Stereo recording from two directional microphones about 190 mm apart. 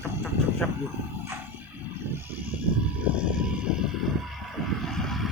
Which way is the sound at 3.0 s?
5° right (ahead or behind).